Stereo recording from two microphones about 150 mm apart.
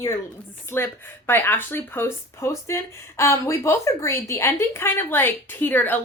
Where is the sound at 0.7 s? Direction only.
15° left (ahead or behind).